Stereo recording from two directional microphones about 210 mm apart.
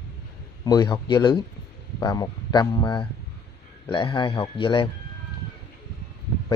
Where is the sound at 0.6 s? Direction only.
20° left (ahead or behind).